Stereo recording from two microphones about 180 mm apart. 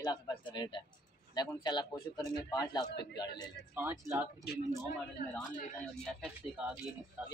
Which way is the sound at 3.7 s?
15° right (ahead or behind).